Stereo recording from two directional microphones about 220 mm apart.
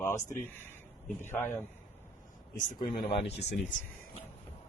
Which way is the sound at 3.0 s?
30° left (ahead or behind).